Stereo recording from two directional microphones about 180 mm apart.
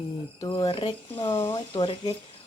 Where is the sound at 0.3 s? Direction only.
20° left (ahead or behind).